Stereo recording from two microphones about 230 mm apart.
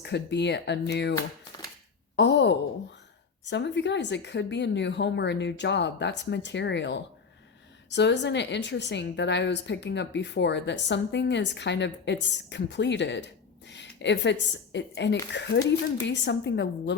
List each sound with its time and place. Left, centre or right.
0.0 s a woman's voice: left
2.1 s a woman's voice: left